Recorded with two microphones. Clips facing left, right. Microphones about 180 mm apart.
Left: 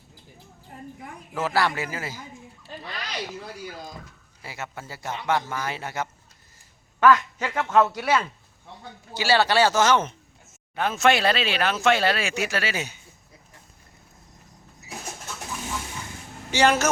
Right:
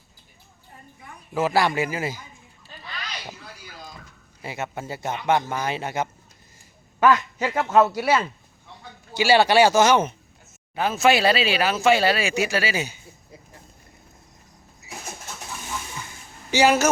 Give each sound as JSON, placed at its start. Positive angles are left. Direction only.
{"t": 1.3, "sound": "speech", "side_deg": -15}
{"t": 4.4, "sound": "a man's voice", "side_deg": -20}
{"t": 16.5, "sound": "speech", "side_deg": -5}